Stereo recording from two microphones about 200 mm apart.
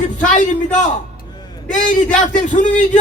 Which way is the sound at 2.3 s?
40° left (ahead or behind).